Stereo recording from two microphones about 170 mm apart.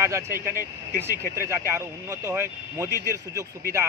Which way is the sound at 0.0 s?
15° right (ahead or behind).